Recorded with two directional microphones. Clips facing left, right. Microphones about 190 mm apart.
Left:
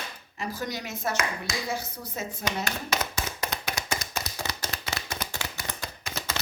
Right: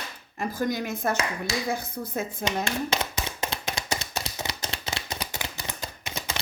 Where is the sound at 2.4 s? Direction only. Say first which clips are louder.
Right 3 dB; 25° right (ahead or behind).